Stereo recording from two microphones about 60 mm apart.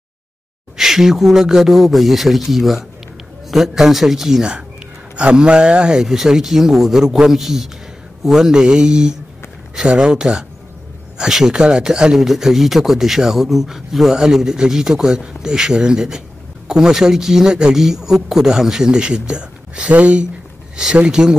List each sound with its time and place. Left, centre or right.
0.7 s speech: centre
5.9 s speech: centre